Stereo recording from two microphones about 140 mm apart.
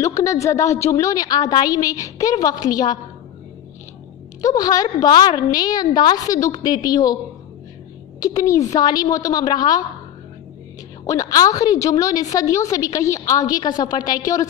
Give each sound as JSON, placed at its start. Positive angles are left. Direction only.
{"t": 0.0, "sound": "a woman's voice", "side_deg": 20}
{"t": 4.4, "sound": "a woman's voice", "side_deg": 25}
{"t": 8.2, "sound": "a woman's voice", "side_deg": 25}
{"t": 11.1, "sound": "a woman's voice", "side_deg": 25}